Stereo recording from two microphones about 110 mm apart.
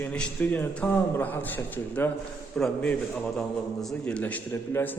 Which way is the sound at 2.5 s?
10° left (ahead or behind).